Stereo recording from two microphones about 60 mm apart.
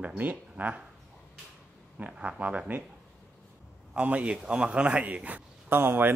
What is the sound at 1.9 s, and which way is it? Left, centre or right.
Speech, right.